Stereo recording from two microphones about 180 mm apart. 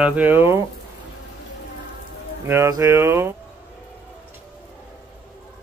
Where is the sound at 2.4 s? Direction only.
15° right (ahead or behind).